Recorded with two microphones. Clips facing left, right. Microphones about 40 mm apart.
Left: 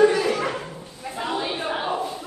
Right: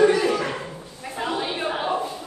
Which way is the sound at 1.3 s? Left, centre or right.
Centre.